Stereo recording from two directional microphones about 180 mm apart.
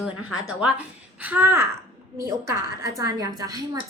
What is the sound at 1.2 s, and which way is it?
A woman's voice, 10° right (ahead or behind).